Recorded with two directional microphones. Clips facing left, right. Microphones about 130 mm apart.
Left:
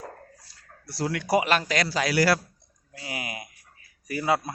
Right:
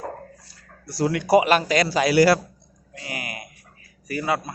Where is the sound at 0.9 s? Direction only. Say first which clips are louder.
Right 6 dB; 10° right (ahead or behind).